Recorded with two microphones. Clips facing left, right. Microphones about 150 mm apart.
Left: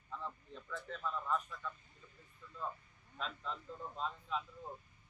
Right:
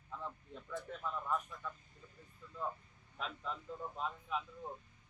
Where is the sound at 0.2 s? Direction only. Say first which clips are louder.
Even; 15° right (ahead or behind).